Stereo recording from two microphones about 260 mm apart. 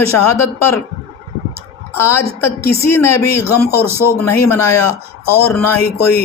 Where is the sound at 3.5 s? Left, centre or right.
Centre.